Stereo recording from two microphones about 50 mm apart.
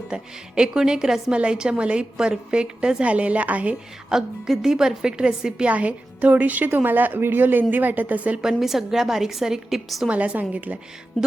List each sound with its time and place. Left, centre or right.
0.1 s a woman's voice: centre
4.1 s a woman's voice: centre
5.6 s a woman's voice: right
8.6 s a woman's voice: centre
10.1 s a woman's voice: right